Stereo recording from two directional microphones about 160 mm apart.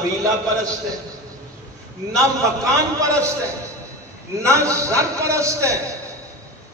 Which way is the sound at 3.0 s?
20° right (ahead or behind).